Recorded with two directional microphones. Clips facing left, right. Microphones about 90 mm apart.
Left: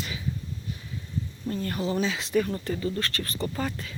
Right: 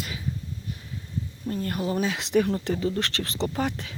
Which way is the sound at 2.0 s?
65° right (ahead or behind).